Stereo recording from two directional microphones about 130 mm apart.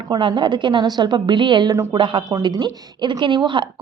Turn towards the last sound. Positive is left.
turn(degrees=-40)  # may be behind; listen again after turning